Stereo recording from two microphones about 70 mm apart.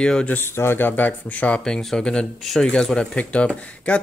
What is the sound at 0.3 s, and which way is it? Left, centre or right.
Speech, left.